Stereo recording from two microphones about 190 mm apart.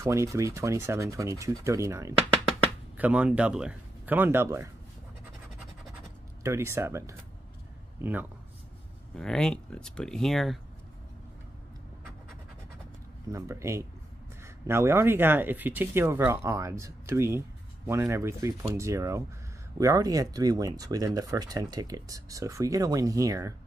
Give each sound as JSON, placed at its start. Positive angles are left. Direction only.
{"t": 0.0, "sound": "speech", "side_deg": -15}
{"t": 6.4, "sound": "speech", "side_deg": -15}
{"t": 9.1, "sound": "speech", "side_deg": 5}
{"t": 13.3, "sound": "speech", "side_deg": -15}